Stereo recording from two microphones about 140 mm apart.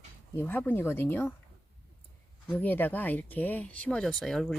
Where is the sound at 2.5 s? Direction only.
10° left (ahead or behind).